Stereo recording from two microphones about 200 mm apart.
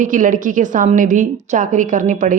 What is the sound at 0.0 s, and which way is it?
A woman's voice, 40° right (ahead or behind).